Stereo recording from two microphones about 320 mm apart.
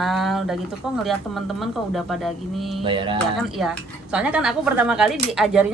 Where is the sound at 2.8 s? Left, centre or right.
Centre.